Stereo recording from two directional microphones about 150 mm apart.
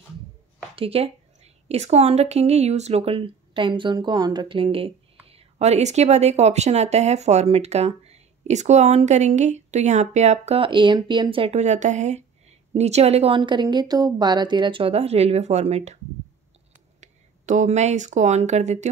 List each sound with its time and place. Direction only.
0.7 s a woman's voice: 40° right (ahead or behind)
11.5 s speech: 50° right (ahead or behind)
17.0 s speech: 55° right (ahead or behind)